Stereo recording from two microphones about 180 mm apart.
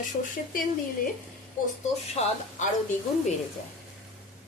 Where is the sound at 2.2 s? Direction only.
35° left (ahead or behind).